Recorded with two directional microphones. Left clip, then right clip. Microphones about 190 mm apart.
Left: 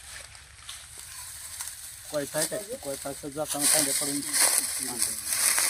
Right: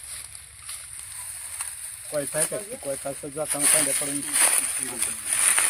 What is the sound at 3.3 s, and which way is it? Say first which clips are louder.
Speech: right 1 dB; 25° right (ahead or behind).